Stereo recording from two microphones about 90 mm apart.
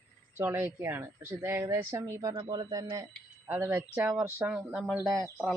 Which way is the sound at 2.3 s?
60° right (ahead or behind).